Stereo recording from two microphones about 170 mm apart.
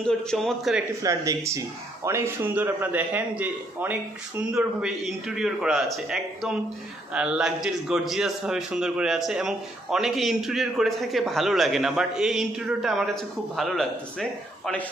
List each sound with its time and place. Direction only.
0.0 s a man's voice: centre (ahead or behind)
1.0 s a man's voice: 20° right (ahead or behind); by 13.8 s centre (ahead or behind)